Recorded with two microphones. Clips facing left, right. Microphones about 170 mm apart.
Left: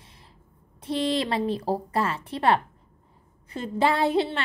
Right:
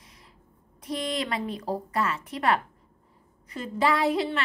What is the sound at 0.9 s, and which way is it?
A woman's voice, 30° left (ahead or behind).